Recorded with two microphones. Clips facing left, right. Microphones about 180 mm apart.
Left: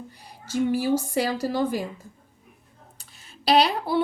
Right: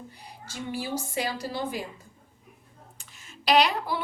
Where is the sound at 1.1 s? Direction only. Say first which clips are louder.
Left 6 dB; 40° left (ahead or behind).